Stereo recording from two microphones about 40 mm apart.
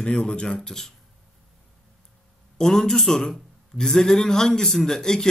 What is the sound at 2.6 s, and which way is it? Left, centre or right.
Speech, centre.